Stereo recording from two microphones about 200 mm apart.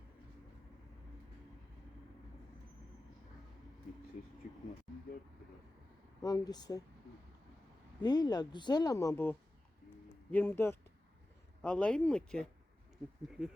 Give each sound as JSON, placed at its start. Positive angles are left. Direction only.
{"t": 4.4, "sound": "a sound", "side_deg": 40}
{"t": 6.2, "sound": "speech", "side_deg": 20}
{"t": 8.0, "sound": "speech", "side_deg": 20}